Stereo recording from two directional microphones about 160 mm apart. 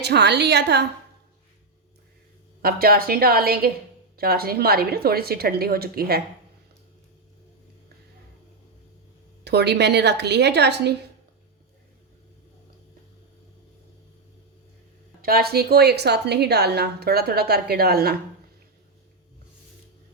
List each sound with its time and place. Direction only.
0.0 s a woman's voice: 90° right
2.6 s a woman's voice: 70° right (ahead or behind)
9.4 s a woman's voice: 90° right
15.2 s a woman's voice: 70° right (ahead or behind)